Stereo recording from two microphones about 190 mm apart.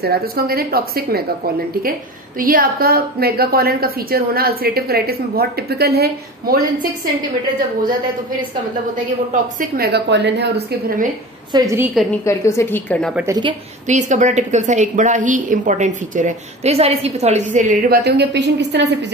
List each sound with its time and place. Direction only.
0.0 s a woman's voice: 55° right (ahead or behind)
9.3 s a woman's voice: 50° right (ahead or behind)
11.5 s a woman's voice: 15° right (ahead or behind)
12.3 s a woman's voice: 15° left (ahead or behind)
13.1 s a woman's voice: 10° right (ahead or behind)
13.8 s a woman's voice: 40° right (ahead or behind); by 18.9 s 65° right (ahead or behind)